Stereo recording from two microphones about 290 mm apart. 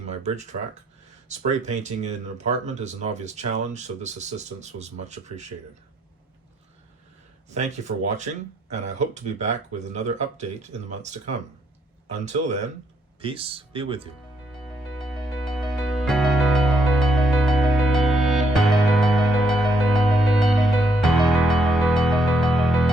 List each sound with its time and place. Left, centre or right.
0.1 s speech: right
7.5 s speech: right
14.7 s music: centre